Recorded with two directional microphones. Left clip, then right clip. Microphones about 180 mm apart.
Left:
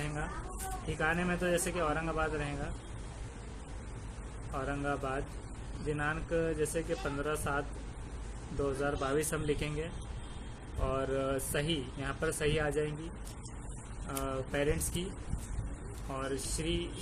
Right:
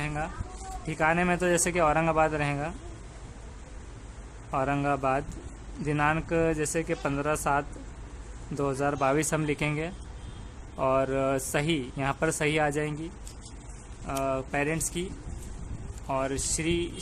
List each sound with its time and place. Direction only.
0.9 s speech: 40° right (ahead or behind)
4.5 s speech: 45° right (ahead or behind)
8.6 s speech: 40° right (ahead or behind)
14.1 s speech: 35° right (ahead or behind)
16.1 s speech: 45° right (ahead or behind)